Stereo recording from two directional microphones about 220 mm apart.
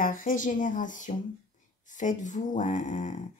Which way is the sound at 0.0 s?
40° left (ahead or behind).